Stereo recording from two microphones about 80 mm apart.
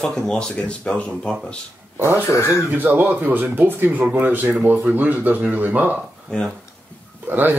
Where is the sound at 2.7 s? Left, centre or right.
Right.